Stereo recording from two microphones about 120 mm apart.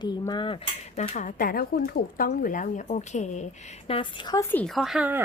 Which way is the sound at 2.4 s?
90° left.